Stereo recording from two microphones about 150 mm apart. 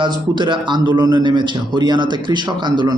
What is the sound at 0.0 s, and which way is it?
A man's voice, 30° right (ahead or behind).